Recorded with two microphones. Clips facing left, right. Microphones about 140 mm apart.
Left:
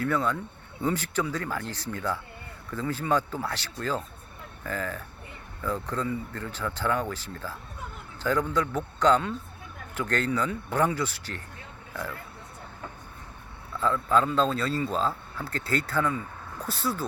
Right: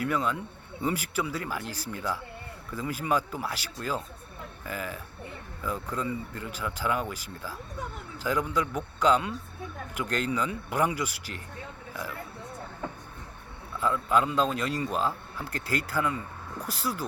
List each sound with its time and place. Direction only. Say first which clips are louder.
0.0 s a man's voice: left 2 dB; 10° right (ahead or behind)
13.7 s a man's voice: left 1 dB; 10° right (ahead or behind)